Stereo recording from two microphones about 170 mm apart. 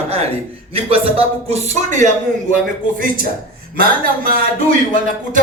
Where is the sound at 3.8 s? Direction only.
60° right (ahead or behind).